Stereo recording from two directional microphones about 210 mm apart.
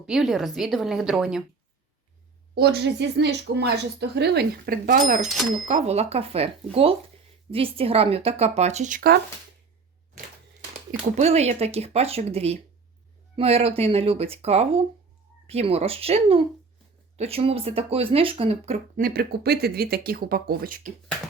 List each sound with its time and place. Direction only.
0.0 s a woman's voice: centre (ahead or behind)
2.6 s speech: 50° right (ahead or behind)
11.2 s speech: 30° right (ahead or behind)
19.0 s speech: 50° right (ahead or behind)